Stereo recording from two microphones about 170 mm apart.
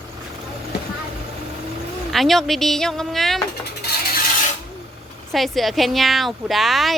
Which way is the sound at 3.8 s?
65° left (ahead or behind).